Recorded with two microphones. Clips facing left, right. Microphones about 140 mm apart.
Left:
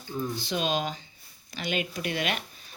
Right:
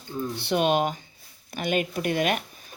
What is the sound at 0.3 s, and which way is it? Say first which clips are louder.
Speech: right 8 dB; 60° right (ahead or behind).